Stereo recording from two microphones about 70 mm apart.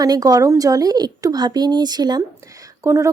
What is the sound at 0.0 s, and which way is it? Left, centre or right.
A woman's voice, right.